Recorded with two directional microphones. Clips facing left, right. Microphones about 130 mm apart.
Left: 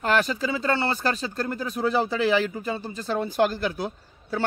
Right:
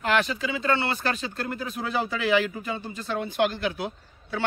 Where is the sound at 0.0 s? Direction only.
40° left (ahead or behind).